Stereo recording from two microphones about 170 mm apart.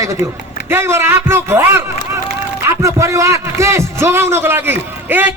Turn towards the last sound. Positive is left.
turn(degrees=-10)  # may be behind; listen again after turning